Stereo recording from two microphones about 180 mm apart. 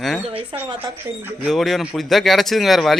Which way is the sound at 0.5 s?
30° right (ahead or behind).